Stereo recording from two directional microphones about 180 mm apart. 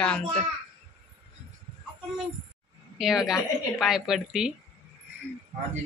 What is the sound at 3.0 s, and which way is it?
A woman's voice, centre (ahead or behind).